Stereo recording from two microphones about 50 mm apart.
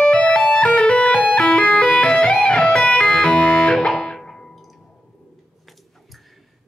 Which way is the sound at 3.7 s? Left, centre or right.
Centre.